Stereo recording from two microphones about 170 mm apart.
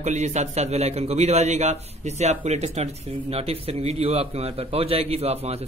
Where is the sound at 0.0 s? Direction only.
45° right (ahead or behind).